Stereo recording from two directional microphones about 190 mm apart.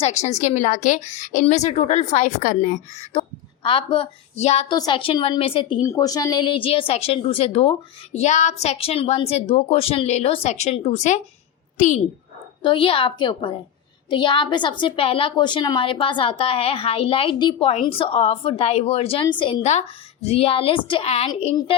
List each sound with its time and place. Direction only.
0.0 s a woman's voice: 35° left (ahead or behind)
3.1 s a woman's voice: 30° left (ahead or behind)
4.7 s a woman's voice: 25° left (ahead or behind)
12.6 s a woman's voice: 25° left (ahead or behind)